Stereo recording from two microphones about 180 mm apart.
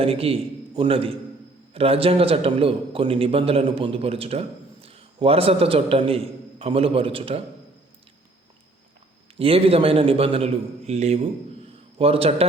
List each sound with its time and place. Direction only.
0.0 s a man's voice: 30° right (ahead or behind)
9.4 s a man's voice: 30° right (ahead or behind)